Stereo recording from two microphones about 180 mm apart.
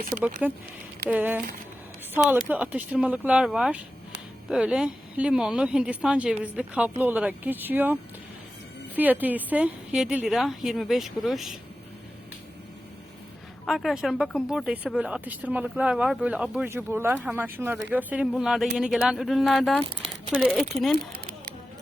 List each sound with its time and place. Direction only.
0.1 s speech: 10° right (ahead or behind)
9.0 s speech: 10° right (ahead or behind)
13.7 s speech: centre (ahead or behind)
21.1 s a sound: 55° right (ahead or behind)